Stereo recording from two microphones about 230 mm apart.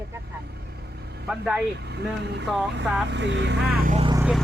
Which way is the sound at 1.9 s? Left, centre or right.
Right.